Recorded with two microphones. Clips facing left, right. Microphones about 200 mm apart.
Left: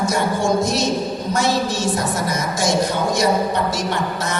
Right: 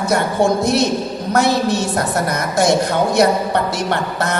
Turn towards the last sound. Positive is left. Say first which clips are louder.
# right 3 dB
turn(degrees=-60)  # may be behind; listen again after turning